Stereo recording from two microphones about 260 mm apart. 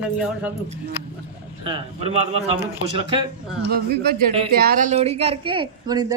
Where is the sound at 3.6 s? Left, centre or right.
Right.